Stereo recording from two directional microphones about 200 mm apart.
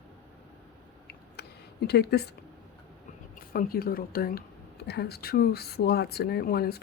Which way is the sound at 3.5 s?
45° left (ahead or behind).